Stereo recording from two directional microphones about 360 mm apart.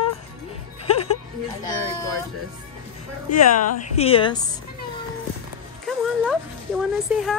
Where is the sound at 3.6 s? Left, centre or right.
Centre.